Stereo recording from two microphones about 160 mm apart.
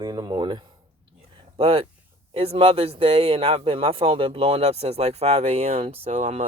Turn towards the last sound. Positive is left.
turn(degrees=-40)  # may be behind; listen again after turning